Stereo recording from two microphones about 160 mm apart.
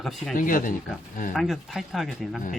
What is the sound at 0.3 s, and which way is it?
Speech, 60° left (ahead or behind).